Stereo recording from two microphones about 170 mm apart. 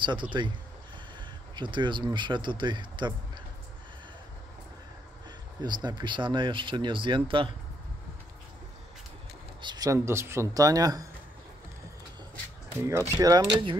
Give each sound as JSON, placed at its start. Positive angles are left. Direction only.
{"t": 0.0, "sound": "speech", "side_deg": -30}
{"t": 1.5, "sound": "speech", "side_deg": -25}
{"t": 5.6, "sound": "speech", "side_deg": -25}
{"t": 9.6, "sound": "speech", "side_deg": -25}
{"t": 12.8, "sound": "speech", "side_deg": -20}